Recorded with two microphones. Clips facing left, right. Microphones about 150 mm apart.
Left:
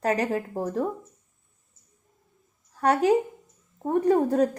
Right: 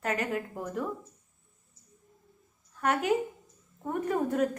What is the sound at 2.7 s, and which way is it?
A woman's voice, 35° left (ahead or behind).